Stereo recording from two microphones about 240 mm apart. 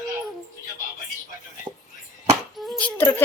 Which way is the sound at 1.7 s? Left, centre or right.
Centre.